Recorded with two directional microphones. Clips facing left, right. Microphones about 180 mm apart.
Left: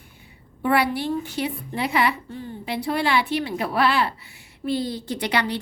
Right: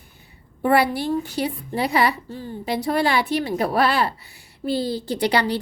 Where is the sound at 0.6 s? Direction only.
40° right (ahead or behind).